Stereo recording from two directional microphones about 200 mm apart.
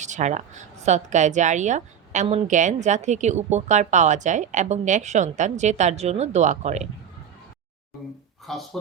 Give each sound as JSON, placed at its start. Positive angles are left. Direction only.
{"t": 0.0, "sound": "a woman's voice", "side_deg": -35}
{"t": 8.4, "sound": "speech", "side_deg": 0}